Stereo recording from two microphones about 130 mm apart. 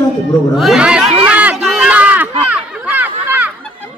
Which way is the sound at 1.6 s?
Centre (ahead or behind).